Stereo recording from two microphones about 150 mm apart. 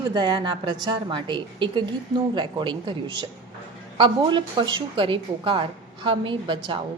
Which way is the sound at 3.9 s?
30° right (ahead or behind).